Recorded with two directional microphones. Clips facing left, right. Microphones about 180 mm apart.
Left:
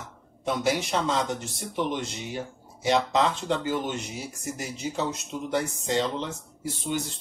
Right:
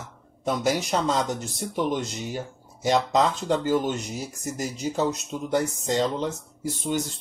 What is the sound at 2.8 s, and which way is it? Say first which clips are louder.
Speech: right 2 dB; 40° right (ahead or behind).